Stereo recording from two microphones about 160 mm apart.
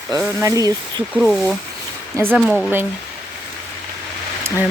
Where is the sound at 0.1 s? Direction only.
15° right (ahead or behind).